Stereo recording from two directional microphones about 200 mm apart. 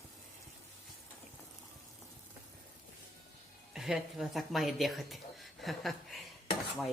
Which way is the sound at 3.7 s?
Centre (ahead or behind).